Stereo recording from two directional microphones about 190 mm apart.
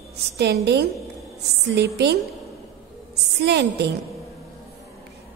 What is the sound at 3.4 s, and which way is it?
Speech, 60° right (ahead or behind).